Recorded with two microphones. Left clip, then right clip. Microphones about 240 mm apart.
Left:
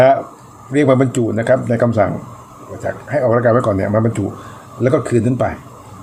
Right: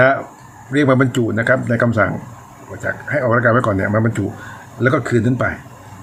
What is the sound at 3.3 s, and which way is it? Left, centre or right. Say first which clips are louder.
Speech: left 1 dB; right.